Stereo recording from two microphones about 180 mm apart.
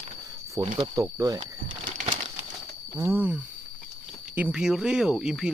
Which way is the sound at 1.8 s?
45° right (ahead or behind).